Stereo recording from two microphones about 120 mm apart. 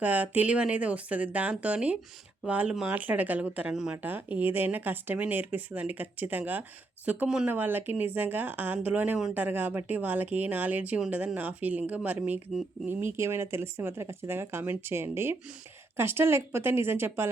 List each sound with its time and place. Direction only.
0.0 s speech: 15° right (ahead or behind)